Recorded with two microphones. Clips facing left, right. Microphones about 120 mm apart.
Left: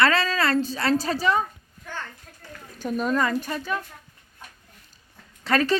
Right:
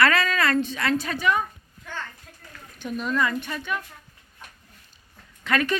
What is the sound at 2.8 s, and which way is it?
A woman's voice, 40° left (ahead or behind).